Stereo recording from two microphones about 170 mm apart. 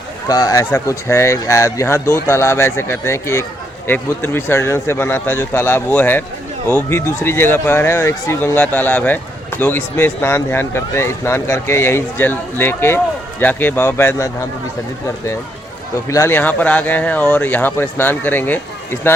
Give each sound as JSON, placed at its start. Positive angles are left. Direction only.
{"t": 0.3, "sound": "speech", "side_deg": 20}
{"t": 16.0, "sound": "speech", "side_deg": 15}